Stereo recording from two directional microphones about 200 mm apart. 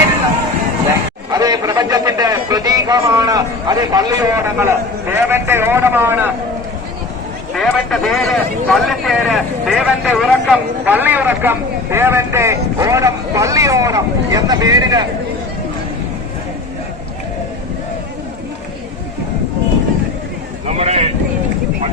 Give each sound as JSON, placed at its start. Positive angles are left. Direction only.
{"t": 1.3, "sound": "a sound", "side_deg": -20}
{"t": 7.5, "sound": "a man's voice", "side_deg": 0}
{"t": 20.7, "sound": "speech", "side_deg": -35}